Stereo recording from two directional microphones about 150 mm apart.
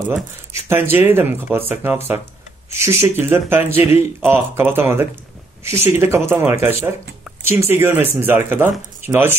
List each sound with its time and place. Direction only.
0.7 s speech: 15° right (ahead or behind)